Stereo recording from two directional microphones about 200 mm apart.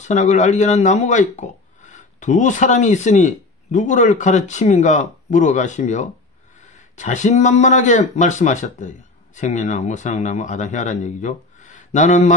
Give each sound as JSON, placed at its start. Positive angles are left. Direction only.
{"t": 0.0, "sound": "speech", "side_deg": 35}